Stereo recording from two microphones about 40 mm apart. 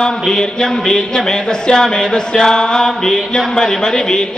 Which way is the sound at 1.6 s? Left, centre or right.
Centre.